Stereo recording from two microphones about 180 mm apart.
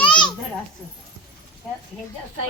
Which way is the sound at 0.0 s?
25° left (ahead or behind).